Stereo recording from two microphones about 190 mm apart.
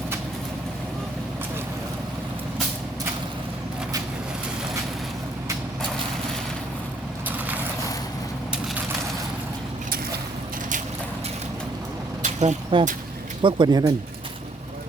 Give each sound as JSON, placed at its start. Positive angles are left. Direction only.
{"t": 12.2, "sound": "vehicle", "side_deg": -35}
{"t": 13.4, "sound": "speech", "side_deg": -20}